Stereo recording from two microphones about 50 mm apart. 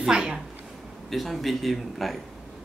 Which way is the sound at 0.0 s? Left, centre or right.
Centre.